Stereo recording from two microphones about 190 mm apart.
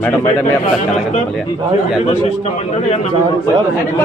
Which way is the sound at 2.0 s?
30° left (ahead or behind).